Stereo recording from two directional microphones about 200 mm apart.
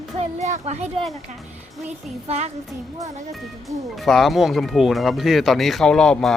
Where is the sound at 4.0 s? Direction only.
Centre (ahead or behind).